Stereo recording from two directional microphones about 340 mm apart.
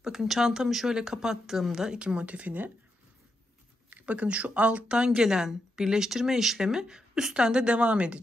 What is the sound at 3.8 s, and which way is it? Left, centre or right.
A woman's voice, centre.